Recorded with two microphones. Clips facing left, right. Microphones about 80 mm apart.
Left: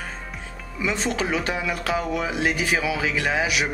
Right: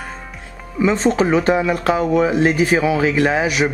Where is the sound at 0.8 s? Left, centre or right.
Right.